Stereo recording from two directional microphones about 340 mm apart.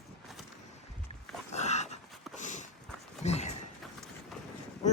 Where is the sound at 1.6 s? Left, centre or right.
Centre.